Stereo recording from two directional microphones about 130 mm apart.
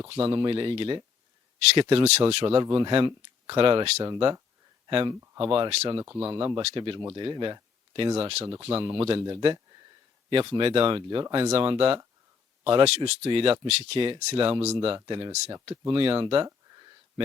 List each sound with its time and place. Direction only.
0.1 s speech: 40° right (ahead or behind)
3.9 s speech: 25° right (ahead or behind)
5.4 s speech: 45° right (ahead or behind)
6.0 s speech: 20° right (ahead or behind)
6.2 s speech: 35° right (ahead or behind); by 8.4 s 50° right (ahead or behind)
8.8 s speech: 40° right (ahead or behind)
14.9 s speech: 35° right (ahead or behind)